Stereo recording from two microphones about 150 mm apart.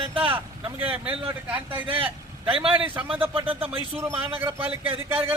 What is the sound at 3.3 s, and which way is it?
Speech, 35° right (ahead or behind).